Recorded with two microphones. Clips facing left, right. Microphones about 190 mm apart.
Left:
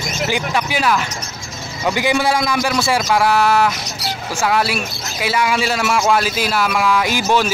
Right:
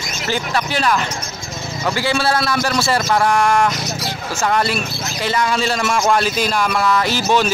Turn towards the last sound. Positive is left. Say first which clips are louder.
# even
turn(degrees=10)  # may be behind; listen again after turning